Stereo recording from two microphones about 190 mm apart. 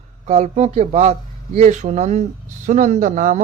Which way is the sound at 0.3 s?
40° right (ahead or behind).